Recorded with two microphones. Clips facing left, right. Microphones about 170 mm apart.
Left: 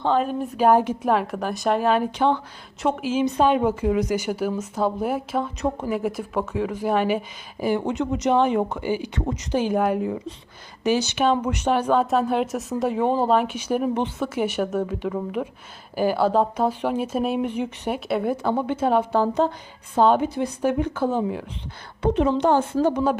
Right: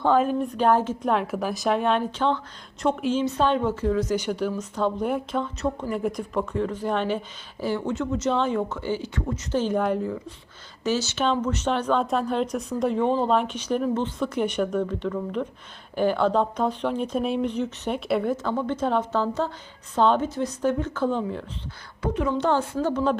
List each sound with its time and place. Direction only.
0.2 s speech: centre (ahead or behind)
1.1 s a woman's voice: centre (ahead or behind)
22.0 s a woman's voice: 25° left (ahead or behind)